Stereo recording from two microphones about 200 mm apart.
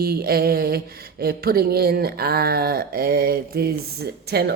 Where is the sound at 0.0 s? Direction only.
50° right (ahead or behind).